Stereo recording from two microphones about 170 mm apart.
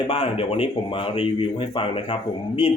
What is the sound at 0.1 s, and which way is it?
Speech, 35° left (ahead or behind).